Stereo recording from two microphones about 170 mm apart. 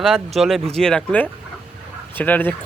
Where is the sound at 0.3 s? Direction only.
Centre (ahead or behind).